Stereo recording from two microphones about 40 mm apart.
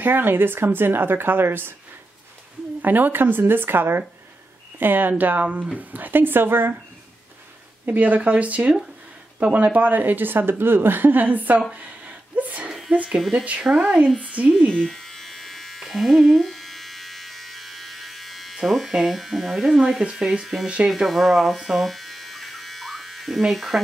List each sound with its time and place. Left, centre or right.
0.0 s speech: right
2.8 s speech: right
4.7 s speech: right
7.8 s speech: right
11.7 s a sound: right
13.4 s speech: right
13.7 s speech: centre
14.2 s speech: right
14.7 s electric shaver: centre
15.8 s electric toothbrush: centre
18.9 s speech: centre; by 20.9 s right
20.9 s electric shaver: centre
23.5 s speech: centre